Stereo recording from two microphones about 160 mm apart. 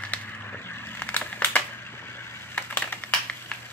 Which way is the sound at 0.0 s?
10° left (ahead or behind).